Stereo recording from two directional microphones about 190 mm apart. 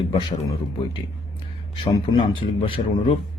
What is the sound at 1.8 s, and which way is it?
Speech, 25° left (ahead or behind).